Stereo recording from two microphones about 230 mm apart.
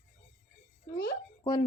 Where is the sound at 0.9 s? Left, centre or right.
Left.